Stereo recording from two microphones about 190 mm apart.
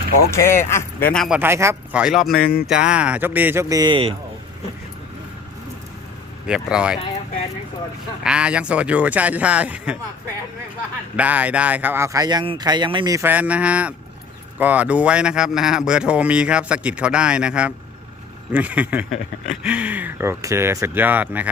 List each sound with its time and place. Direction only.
0.3 s speech: 15° left (ahead or behind)
1.4 s speech: 15° right (ahead or behind)
2.3 s speech: 50° left (ahead or behind)
2.6 s speech: 5° right (ahead or behind); by 4.1 s 25° right (ahead or behind)
6.5 s speech: 5° right (ahead or behind)
8.2 s speech: 5° right (ahead or behind)
11.2 s speech: 10° right (ahead or behind)